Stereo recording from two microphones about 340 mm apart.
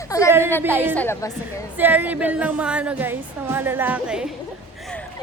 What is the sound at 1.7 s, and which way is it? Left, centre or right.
A woman's voice, centre.